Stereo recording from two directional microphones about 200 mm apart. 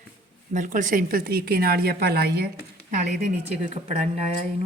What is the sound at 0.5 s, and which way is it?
Speech, 40° right (ahead or behind).